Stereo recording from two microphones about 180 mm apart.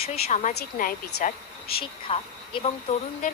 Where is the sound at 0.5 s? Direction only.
60° left (ahead or behind).